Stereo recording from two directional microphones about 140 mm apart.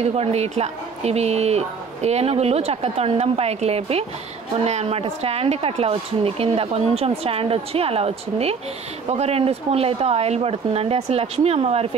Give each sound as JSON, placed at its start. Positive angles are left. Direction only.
{"t": 0.0, "sound": "speech", "side_deg": -45}